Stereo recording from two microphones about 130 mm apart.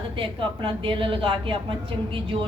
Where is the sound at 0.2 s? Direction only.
40° right (ahead or behind).